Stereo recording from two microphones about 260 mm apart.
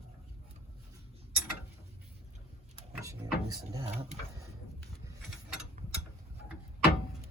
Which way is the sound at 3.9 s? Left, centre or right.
Right.